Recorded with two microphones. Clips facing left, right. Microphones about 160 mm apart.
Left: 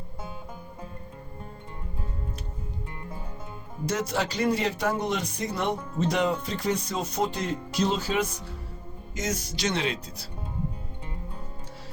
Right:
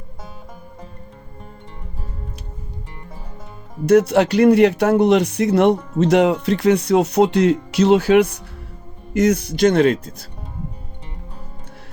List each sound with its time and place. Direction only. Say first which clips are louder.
3.8 s speech: right 15 dB; 65° right (ahead or behind)